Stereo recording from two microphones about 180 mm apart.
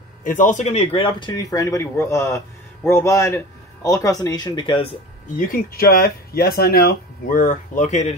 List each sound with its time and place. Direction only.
0.2 s speech: 45° left (ahead or behind); by 4.9 s 30° left (ahead or behind)
5.5 s speech: 55° left (ahead or behind)